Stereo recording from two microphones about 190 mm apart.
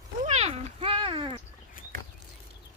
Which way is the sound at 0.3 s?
35° right (ahead or behind).